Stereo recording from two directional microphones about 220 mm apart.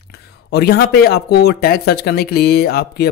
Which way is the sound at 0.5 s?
45° left (ahead or behind).